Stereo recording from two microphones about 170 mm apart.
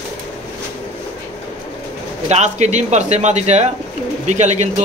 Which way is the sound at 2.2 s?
45° right (ahead or behind).